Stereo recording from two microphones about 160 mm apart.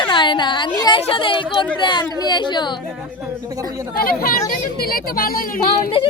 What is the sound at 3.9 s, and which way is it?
A woman's voice, 65° left (ahead or behind).